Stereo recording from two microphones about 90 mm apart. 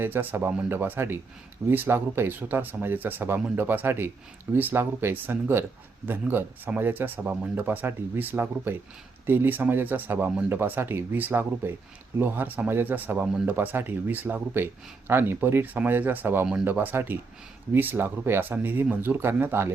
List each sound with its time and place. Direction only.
0.0 s speech: 20° right (ahead or behind)